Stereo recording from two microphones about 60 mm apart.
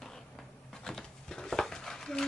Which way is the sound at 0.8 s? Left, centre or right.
Centre.